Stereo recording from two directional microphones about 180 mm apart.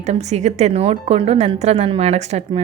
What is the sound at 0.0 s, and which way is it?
Speech, 40° right (ahead or behind).